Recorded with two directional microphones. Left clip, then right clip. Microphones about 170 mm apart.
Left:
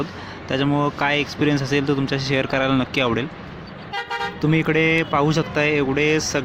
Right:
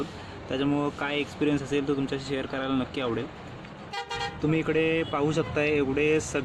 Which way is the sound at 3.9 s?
20° left (ahead or behind).